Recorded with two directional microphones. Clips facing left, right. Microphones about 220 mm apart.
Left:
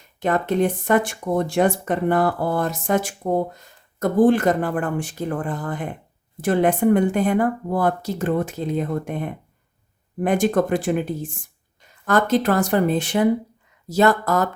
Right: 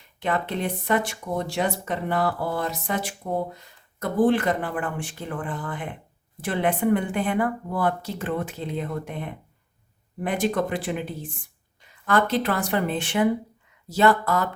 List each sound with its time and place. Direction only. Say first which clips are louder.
0.0 s speech: left 5 dB; 45° left (ahead or behind)